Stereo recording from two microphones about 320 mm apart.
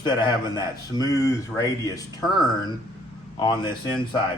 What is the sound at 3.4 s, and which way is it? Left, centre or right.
Speech, centre.